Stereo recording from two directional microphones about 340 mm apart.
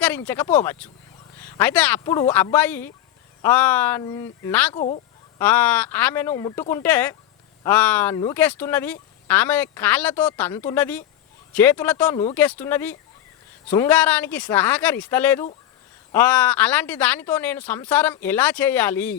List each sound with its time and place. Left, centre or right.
0.0 s speech: centre
4.7 s speech: centre
5.4 s speech: centre